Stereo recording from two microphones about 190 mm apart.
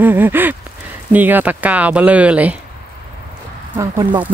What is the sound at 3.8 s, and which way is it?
Speech, 20° right (ahead or behind).